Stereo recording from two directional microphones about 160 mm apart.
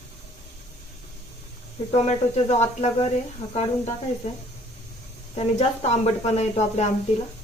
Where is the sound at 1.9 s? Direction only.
45° left (ahead or behind).